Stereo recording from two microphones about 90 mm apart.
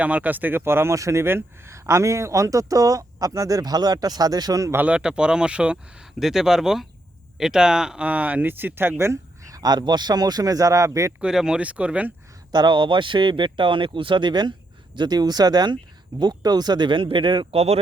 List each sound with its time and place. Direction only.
0.0 s speech: 15° right (ahead or behind); by 4.7 s 45° right (ahead or behind)
4.7 s speech: 15° right (ahead or behind); by 11.1 s 35° right (ahead or behind)
11.2 s speech: 5° right (ahead or behind)
12.5 s speech: 55° right (ahead or behind)